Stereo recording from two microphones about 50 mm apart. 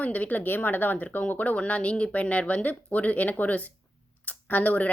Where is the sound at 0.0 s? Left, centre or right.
Left.